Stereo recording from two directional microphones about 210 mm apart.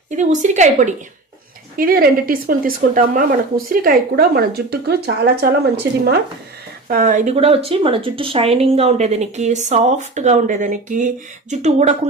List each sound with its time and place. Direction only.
0.1 s speech: 35° right (ahead or behind); by 6.1 s 50° right (ahead or behind)
6.8 s speech: 40° right (ahead or behind)